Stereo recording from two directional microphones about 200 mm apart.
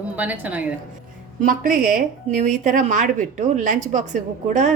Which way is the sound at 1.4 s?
40° right (ahead or behind).